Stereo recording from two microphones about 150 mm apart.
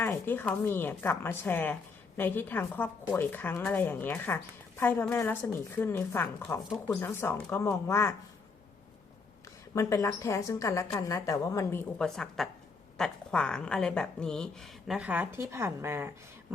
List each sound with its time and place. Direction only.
0.0 s a woman's voice: 15° left (ahead or behind)
9.7 s speech: 20° left (ahead or behind)
11.9 s a woman's voice: 5° left (ahead or behind); by 16.1 s 15° right (ahead or behind)